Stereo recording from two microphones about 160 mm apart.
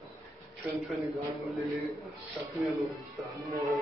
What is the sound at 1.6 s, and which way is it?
A man's voice, 20° right (ahead or behind).